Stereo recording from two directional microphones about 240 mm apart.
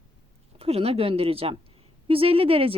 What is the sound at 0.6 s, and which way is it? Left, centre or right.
Speech, right.